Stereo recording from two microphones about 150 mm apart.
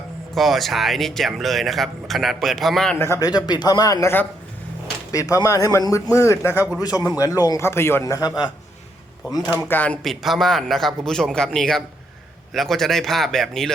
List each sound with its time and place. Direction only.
0.3 s speech: centre (ahead or behind)
3.0 s a man's voice: 20° left (ahead or behind)
9.5 s speech: 10° left (ahead or behind)